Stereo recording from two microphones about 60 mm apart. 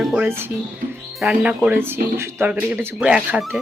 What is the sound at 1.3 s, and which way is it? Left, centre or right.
Speech, centre.